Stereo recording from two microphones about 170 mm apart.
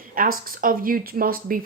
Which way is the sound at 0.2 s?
55° right (ahead or behind).